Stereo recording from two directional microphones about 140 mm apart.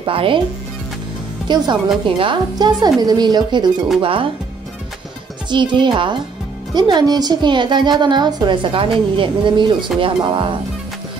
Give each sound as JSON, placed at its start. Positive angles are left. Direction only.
{"t": 0.0, "sound": "a woman's voice", "side_deg": -40}
{"t": 1.5, "sound": "a woman's voice", "side_deg": -35}
{"t": 5.5, "sound": "a woman's voice", "side_deg": -35}